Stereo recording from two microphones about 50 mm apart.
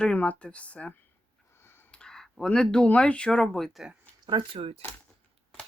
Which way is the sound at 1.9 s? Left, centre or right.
Centre.